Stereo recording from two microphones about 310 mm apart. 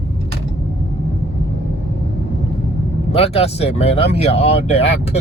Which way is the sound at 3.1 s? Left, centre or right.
Centre.